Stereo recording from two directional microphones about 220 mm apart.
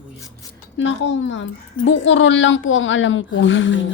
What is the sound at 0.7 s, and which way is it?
Speech, 55° left (ahead or behind).